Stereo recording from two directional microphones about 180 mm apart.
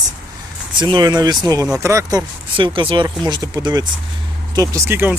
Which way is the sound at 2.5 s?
25° right (ahead or behind).